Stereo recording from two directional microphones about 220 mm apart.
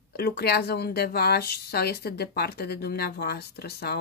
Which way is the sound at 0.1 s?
45° left (ahead or behind).